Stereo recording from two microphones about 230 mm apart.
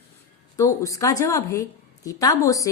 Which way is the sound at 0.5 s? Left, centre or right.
Centre.